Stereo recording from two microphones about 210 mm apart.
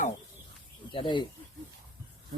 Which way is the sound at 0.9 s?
25° left (ahead or behind).